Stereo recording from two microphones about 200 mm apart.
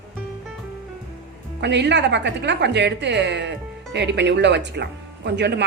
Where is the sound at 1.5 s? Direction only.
60° right (ahead or behind).